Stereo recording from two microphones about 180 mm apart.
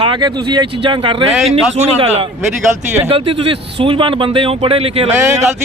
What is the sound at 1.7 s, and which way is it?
Speech, 35° right (ahead or behind).